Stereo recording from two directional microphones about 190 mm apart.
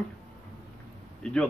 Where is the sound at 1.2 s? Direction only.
5° left (ahead or behind).